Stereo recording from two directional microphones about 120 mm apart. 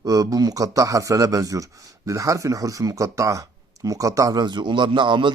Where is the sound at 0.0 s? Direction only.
30° right (ahead or behind).